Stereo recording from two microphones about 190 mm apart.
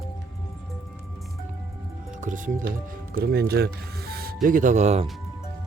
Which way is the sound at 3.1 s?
55° right (ahead or behind).